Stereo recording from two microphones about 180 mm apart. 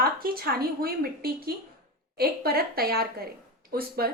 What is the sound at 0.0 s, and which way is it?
A woman's voice, 55° right (ahead or behind).